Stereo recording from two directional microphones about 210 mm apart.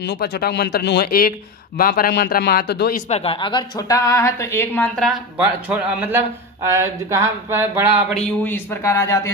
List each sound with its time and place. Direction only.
0.0 s speech: 50° left (ahead or behind)
3.1 s a woman's voice: 30° left (ahead or behind); by 5.1 s 5° left (ahead or behind)
5.4 s speech: 10° right (ahead or behind)
8.1 s a woman's voice: 5° left (ahead or behind)